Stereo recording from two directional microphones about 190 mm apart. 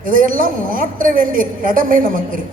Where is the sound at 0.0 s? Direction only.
45° right (ahead or behind).